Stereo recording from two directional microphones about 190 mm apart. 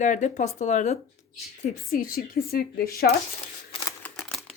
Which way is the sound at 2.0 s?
50° left (ahead or behind).